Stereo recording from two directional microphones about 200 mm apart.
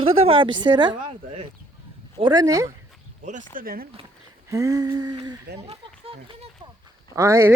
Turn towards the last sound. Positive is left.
turn(degrees=-15)  # may be behind; listen again after turning